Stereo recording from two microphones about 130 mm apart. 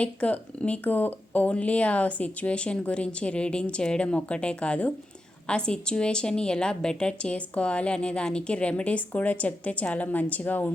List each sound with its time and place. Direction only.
0.0 s a woman's voice: 10° left (ahead or behind)